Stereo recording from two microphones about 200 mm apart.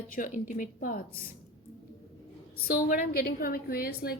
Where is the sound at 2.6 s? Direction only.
40° left (ahead or behind).